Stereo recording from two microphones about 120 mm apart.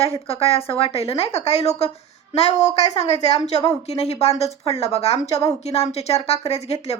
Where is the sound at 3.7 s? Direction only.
60° left (ahead or behind).